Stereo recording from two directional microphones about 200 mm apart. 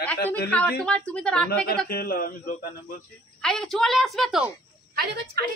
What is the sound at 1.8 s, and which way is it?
Speech, 50° left (ahead or behind).